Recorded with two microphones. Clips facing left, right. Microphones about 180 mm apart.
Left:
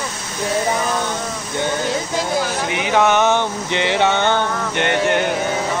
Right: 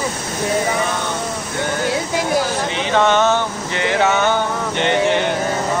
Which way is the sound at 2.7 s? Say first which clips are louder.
Left 1 dB; 10° left (ahead or behind).